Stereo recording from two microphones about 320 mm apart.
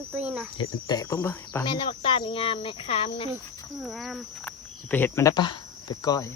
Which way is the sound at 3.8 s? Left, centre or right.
Centre.